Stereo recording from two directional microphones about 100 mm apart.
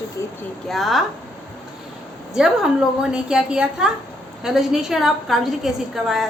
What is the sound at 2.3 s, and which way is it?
A woman's voice, 5° right (ahead or behind).